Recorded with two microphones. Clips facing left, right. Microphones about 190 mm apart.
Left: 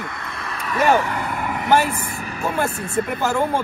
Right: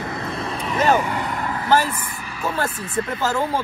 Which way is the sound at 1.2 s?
10° left (ahead or behind).